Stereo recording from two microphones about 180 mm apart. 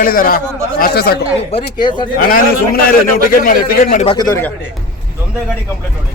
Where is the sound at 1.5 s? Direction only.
25° left (ahead or behind).